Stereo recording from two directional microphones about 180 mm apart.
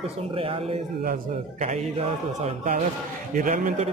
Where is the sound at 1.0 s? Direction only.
45° right (ahead or behind).